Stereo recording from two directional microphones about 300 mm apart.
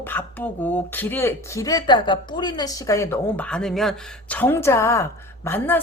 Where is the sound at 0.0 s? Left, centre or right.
Centre.